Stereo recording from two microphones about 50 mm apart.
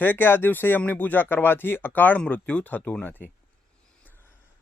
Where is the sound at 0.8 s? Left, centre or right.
Left.